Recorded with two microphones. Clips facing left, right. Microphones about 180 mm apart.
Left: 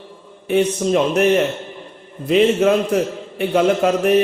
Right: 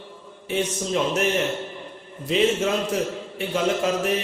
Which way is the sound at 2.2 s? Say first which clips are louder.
Left 7 dB; 60° left (ahead or behind).